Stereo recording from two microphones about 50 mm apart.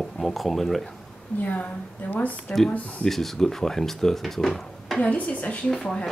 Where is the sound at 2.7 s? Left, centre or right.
Left.